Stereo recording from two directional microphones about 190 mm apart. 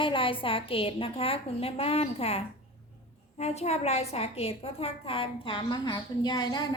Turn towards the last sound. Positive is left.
turn(degrees=20)  # may be behind; listen again after turning